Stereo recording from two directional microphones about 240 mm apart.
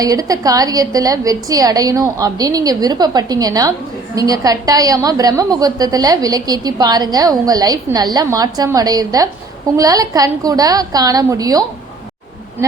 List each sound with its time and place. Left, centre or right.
0.0 s a woman's voice: centre